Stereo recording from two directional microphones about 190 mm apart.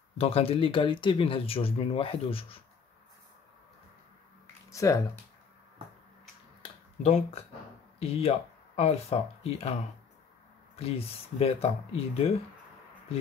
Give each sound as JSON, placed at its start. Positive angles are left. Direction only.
{"t": 0.2, "sound": "speech", "side_deg": 30}
{"t": 4.6, "sound": "speech", "side_deg": 15}
{"t": 6.6, "sound": "finger snapping", "side_deg": 35}
{"t": 8.0, "sound": "speech", "side_deg": 35}
{"t": 10.8, "sound": "speech", "side_deg": 30}